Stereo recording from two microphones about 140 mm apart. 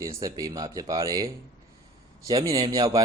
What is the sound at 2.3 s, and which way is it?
Speech, 25° right (ahead or behind).